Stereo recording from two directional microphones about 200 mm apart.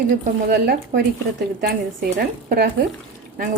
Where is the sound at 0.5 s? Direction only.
50° right (ahead or behind).